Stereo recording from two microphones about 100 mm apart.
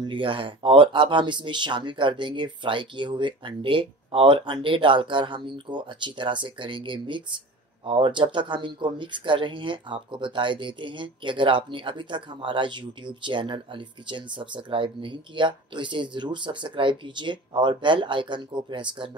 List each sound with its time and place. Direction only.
0.0 s speech: 60° right (ahead or behind)